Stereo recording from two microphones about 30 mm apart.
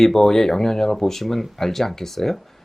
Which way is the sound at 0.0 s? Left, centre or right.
Centre.